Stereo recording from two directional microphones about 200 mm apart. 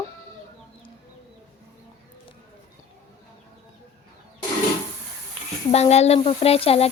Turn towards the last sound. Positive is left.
turn(degrees=30)  # may be behind; listen again after turning